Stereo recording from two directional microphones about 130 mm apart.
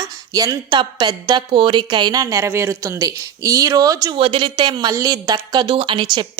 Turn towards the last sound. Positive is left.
turn(degrees=-35)  # may be behind; listen again after turning